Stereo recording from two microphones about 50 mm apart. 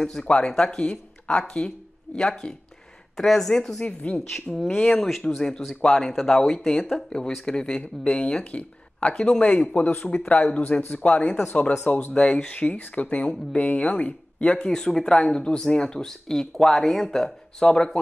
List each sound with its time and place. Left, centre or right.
0.2 s speech: centre
3.8 s speech: left
4.6 s speech: centre; by 10.6 s left
10.8 s speech: left
11.1 s speech: left
11.8 s speech: left
12.1 s speech: centre
14.7 s speech: centre